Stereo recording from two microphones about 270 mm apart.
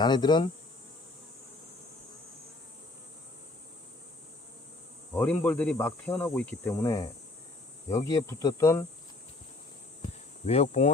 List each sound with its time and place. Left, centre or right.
0.0 s speech: centre
5.1 s speech: centre
10.4 s speech: left